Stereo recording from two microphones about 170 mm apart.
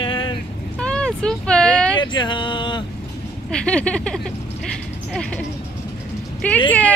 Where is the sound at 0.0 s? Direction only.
30° left (ahead or behind).